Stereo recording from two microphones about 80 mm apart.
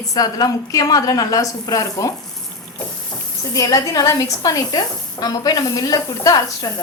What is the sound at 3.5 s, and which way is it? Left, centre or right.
A woman's voice, left.